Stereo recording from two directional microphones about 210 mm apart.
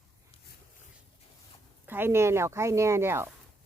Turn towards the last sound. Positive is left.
turn(degrees=-10)  # may be behind; listen again after turning